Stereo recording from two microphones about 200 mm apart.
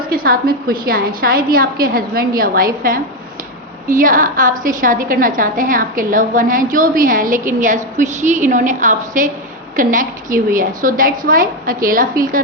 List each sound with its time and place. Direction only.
0.1 s a woman's voice: 45° right (ahead or behind)